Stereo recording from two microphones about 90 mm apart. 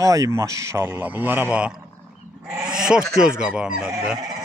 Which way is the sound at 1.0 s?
20° right (ahead or behind).